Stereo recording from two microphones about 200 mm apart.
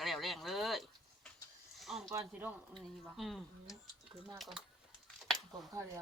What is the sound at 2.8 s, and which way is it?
Speech, centre (ahead or behind).